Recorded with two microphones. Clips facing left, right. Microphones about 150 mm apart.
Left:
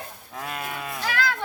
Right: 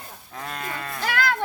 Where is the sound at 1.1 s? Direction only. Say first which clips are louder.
Right 2 dB; 55° right (ahead or behind).